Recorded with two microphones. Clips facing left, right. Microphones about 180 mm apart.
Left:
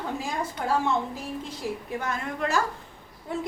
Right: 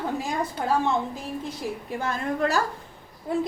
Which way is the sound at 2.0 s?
35° right (ahead or behind).